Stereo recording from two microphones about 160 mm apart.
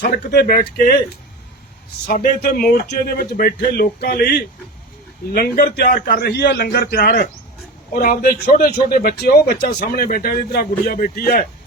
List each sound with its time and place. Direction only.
0.3 s speech: 80° left
2.0 s a man's voice: 65° left (ahead or behind)
7.9 s speech: 65° left (ahead or behind)